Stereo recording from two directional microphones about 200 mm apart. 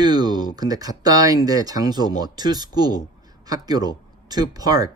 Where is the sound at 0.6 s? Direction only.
20° right (ahead or behind).